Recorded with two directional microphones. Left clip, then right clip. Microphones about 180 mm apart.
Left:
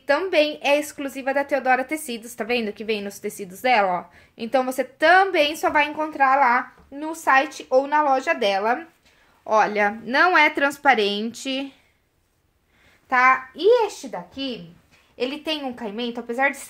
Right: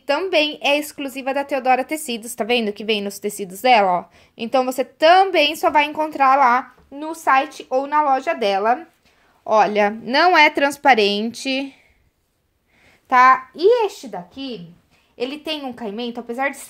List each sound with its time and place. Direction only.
0.0 s a woman's voice: 35° right (ahead or behind); by 7.0 s 55° right (ahead or behind)
7.0 s a woman's voice: 35° right (ahead or behind)
13.1 s a woman's voice: 50° right (ahead or behind)